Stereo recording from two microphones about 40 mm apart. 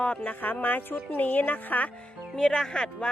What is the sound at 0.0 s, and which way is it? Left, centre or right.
Speech, left.